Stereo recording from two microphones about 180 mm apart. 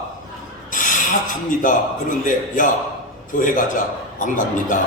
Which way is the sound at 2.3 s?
45° left (ahead or behind).